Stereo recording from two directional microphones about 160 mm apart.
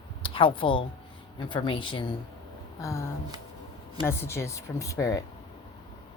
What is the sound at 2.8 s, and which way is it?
A woman's voice, 15° left (ahead or behind).